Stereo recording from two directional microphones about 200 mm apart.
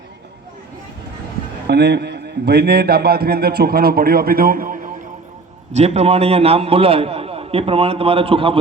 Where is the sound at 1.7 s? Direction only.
55° right (ahead or behind).